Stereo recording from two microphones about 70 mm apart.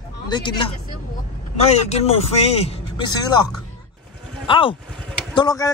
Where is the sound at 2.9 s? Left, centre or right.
Left.